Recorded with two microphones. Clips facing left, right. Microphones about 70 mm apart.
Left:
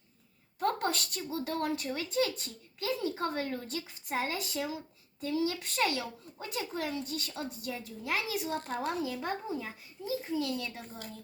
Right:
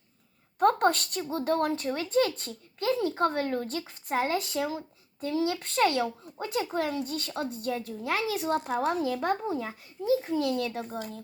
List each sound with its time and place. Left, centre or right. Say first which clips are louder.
0.6 s a woman's voice: right 8 dB; right
8.5 s speech: right 7 dB; centre
8.9 s a child's voice: right 7 dB; right